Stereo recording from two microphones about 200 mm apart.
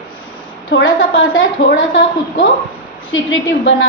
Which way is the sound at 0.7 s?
75° left (ahead or behind).